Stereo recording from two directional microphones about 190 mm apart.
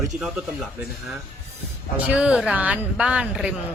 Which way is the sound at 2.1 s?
5° right (ahead or behind).